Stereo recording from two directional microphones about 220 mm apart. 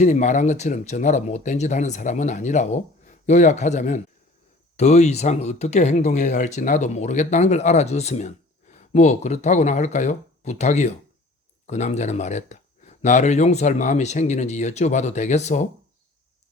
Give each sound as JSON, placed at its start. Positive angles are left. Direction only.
{"t": 0.0, "sound": "speech", "side_deg": 35}